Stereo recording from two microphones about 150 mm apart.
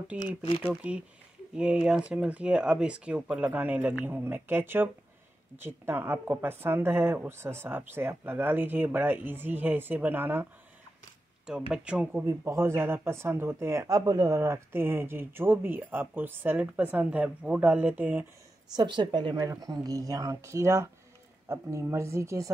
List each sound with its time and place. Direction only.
0.1 s speech: 10° right (ahead or behind)
11.7 s speech: 5° right (ahead or behind)
18.8 s a woman's voice: 30° right (ahead or behind)